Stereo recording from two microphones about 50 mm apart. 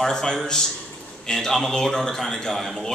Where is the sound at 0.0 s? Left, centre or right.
Centre.